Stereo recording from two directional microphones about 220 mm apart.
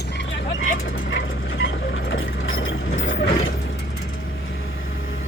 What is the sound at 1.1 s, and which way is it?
Ratchet, 55° left (ahead or behind).